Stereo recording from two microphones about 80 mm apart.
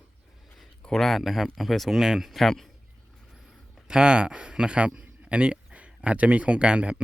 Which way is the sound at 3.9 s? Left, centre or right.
Centre.